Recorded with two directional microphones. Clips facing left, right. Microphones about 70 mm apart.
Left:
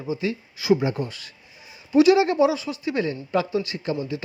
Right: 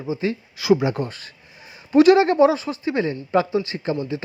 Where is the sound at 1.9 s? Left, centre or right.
Right.